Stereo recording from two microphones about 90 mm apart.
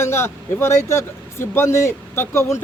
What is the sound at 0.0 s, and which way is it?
A man's voice, 30° left (ahead or behind).